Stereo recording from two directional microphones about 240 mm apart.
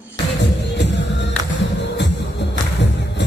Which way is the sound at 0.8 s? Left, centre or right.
Left.